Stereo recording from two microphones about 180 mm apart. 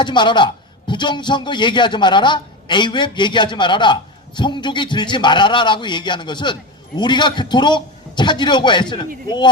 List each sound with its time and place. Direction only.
0.0 s a man's voice: 25° left (ahead or behind)